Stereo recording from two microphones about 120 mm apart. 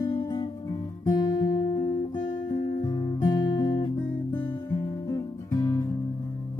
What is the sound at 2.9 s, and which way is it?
Music, 35° left (ahead or behind).